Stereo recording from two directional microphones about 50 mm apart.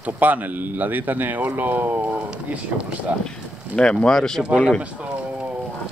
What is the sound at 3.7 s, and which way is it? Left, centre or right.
Speech, centre.